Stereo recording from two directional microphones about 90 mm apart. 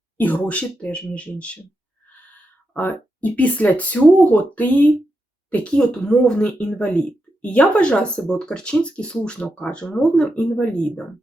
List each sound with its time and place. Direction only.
0.2 s speech: 15° left (ahead or behind)
2.7 s speech: 20° left (ahead or behind)